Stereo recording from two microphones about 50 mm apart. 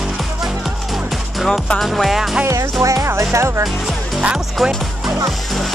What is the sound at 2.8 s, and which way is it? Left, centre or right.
Music, right.